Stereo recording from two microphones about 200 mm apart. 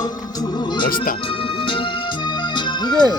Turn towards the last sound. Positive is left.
turn(degrees=20)  # may be behind; listen again after turning